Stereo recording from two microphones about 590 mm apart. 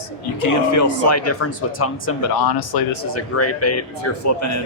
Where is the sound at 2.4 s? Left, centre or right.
Left.